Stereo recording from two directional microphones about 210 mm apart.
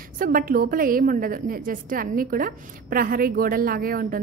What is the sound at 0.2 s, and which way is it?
A woman's voice, 40° right (ahead or behind).